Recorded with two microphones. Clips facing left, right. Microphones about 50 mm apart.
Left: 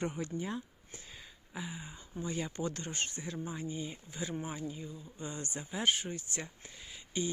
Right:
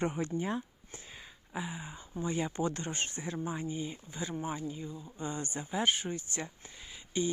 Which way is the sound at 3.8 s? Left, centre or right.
Centre.